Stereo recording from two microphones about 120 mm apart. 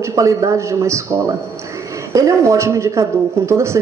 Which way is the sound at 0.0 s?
25° right (ahead or behind).